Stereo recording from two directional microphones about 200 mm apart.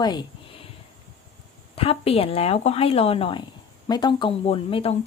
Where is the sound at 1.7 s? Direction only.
30° left (ahead or behind).